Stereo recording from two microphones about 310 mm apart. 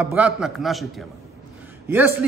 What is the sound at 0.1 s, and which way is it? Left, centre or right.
A man's voice, centre.